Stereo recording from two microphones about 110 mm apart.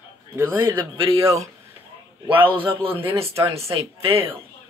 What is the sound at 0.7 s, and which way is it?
Speech, 50° right (ahead or behind).